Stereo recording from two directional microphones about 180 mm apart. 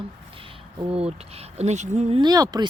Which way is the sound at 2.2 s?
20° right (ahead or behind).